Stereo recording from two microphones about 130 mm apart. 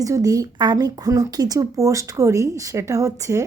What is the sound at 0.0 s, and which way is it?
Speech, 25° right (ahead or behind).